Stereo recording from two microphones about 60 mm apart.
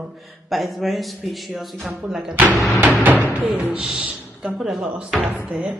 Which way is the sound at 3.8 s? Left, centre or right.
Centre.